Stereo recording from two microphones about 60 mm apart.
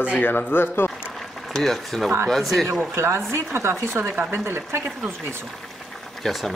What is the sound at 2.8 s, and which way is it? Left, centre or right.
A woman's voice, right.